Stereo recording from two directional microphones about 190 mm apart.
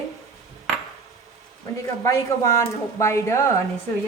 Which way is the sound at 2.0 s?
15° left (ahead or behind).